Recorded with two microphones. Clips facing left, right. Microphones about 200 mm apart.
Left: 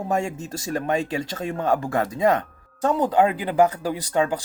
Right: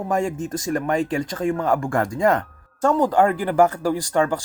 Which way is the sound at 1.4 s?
25° left (ahead or behind).